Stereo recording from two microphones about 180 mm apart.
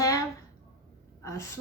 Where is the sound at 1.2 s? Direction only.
15° left (ahead or behind).